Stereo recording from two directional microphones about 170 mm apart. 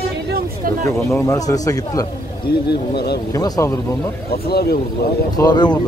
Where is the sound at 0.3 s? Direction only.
55° right (ahead or behind).